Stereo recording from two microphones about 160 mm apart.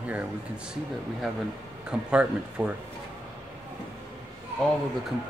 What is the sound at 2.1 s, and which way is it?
Speech, 5° right (ahead or behind).